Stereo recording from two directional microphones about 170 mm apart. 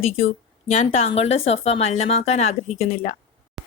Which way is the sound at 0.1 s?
35° left (ahead or behind).